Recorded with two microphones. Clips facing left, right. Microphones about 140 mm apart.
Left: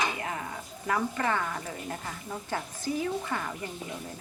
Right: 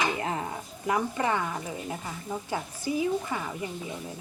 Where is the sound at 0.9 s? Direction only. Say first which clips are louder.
Right 2 dB; 15° right (ahead or behind).